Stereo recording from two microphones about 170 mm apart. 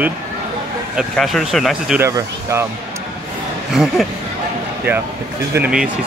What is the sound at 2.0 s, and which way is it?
Speech, 20° right (ahead or behind).